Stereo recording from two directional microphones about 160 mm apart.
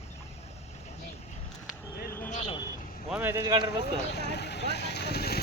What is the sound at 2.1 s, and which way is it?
Speech, 15° left (ahead or behind).